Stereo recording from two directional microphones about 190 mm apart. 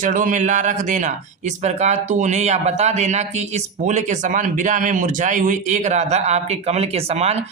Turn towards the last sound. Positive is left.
turn(degrees=-35)  # may be behind; listen again after turning